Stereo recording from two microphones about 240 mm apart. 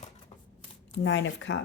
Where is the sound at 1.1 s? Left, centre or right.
Left.